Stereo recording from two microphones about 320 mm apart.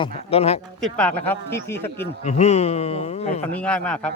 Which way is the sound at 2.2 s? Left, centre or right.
Left.